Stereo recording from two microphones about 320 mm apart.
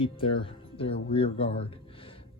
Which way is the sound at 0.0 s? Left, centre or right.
Centre.